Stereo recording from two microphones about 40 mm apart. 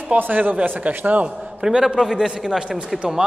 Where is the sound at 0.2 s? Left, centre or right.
Right.